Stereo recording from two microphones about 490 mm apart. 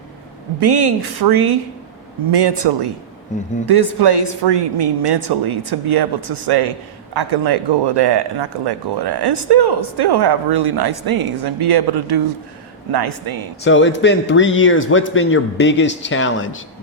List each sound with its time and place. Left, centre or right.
0.6 s speech: right
3.3 s speech: centre
3.7 s speech: right
13.7 s speech: left